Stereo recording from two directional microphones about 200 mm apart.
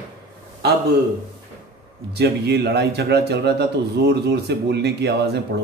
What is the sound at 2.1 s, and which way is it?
A man's voice, 55° right (ahead or behind).